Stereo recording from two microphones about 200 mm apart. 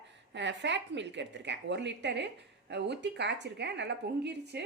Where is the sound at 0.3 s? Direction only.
60° right (ahead or behind).